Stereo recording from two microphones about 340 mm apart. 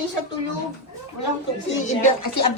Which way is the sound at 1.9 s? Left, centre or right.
Left.